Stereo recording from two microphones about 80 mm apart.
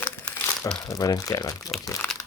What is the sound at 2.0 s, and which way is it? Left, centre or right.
Crumpling, left.